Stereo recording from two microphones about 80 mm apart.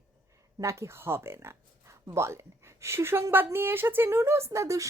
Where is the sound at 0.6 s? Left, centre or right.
Right.